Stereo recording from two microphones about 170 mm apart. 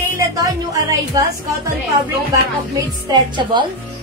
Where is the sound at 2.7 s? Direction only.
25° right (ahead or behind).